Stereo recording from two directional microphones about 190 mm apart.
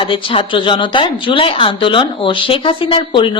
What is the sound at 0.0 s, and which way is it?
Speech, 25° left (ahead or behind).